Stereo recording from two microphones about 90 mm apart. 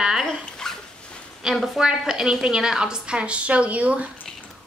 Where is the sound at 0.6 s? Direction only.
5° left (ahead or behind).